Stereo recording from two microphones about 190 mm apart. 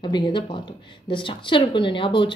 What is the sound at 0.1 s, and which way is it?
A woman's voice, 25° left (ahead or behind).